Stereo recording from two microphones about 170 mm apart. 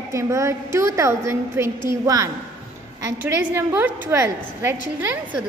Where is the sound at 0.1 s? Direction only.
15° right (ahead or behind).